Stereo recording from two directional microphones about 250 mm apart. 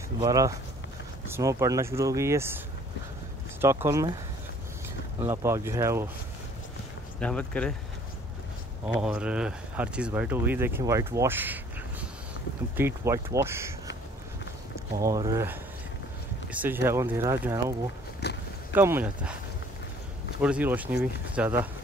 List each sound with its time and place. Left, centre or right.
0.2 s speech: centre
3.6 s speech: centre
5.2 s speech: centre
7.2 s speech: centre
8.8 s speech: centre
15.0 s speech: centre
16.5 s speech: centre
18.2 s a sound: left
18.8 s speech: centre
20.4 s speech: centre